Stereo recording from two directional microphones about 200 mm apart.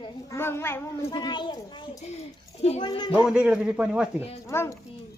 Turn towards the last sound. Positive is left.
turn(degrees=15)  # may be behind; listen again after turning